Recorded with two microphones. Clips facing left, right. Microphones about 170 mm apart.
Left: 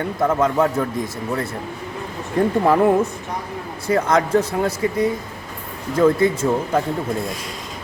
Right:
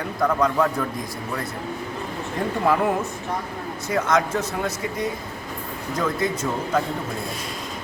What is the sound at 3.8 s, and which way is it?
Speech, 30° left (ahead or behind).